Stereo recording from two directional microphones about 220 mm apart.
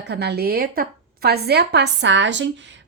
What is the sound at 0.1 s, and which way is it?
A woman's voice, 50° right (ahead or behind).